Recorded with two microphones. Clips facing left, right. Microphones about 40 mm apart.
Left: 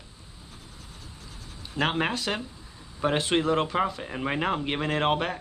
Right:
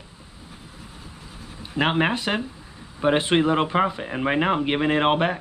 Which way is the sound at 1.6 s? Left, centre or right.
Right.